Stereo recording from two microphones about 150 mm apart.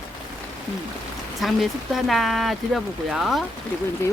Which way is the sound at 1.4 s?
Centre (ahead or behind).